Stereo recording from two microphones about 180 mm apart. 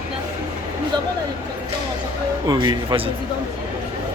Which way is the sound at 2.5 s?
25° right (ahead or behind).